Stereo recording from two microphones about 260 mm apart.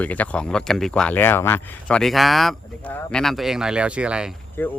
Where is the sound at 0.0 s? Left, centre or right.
Centre.